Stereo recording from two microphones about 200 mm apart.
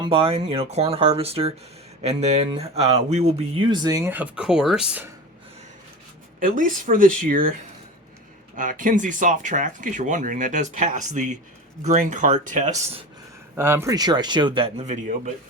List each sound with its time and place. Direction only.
0.0 s speech: 25° right (ahead or behind)
3.8 s speech: 15° right (ahead or behind)
6.4 s speech: 40° right (ahead or behind)
8.5 s speech: 40° right (ahead or behind)
13.6 s speech: 10° right (ahead or behind); by 15.3 s 35° right (ahead or behind)